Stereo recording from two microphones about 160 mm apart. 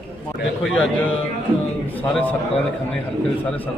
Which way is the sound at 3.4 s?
10° left (ahead or behind).